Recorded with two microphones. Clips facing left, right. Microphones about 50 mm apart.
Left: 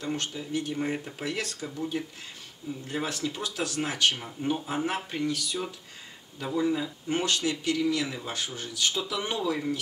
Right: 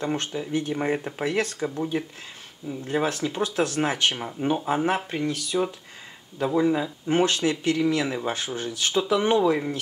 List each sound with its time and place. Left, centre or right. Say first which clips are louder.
0.0 s speech: right 5 dB; right
5.2 s speech: right 5 dB; right